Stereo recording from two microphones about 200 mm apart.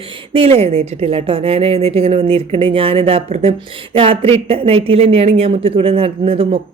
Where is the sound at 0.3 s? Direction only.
30° right (ahead or behind).